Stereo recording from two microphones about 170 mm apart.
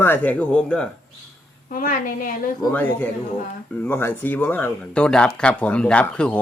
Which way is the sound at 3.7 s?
10° left (ahead or behind).